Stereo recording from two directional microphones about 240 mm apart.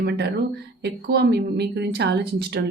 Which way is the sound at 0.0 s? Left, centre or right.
Right.